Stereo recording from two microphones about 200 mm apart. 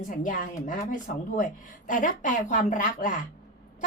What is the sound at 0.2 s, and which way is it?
Speech, 40° left (ahead or behind).